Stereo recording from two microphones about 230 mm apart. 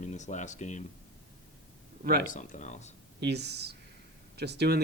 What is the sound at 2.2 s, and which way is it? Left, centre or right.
Speech, left.